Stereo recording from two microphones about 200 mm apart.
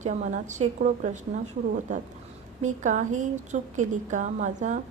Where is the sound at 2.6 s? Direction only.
40° right (ahead or behind).